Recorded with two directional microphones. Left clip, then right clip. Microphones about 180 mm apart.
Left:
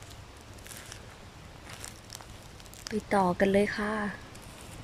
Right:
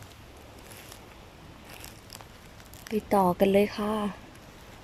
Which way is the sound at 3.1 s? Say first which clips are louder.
Right 3 dB; 10° right (ahead or behind).